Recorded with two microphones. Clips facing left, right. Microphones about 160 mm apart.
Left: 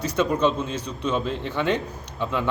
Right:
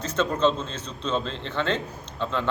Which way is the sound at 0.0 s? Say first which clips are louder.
Left 1 dB; 10° left (ahead or behind).